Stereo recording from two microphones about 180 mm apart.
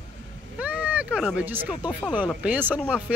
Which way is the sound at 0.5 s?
5° right (ahead or behind).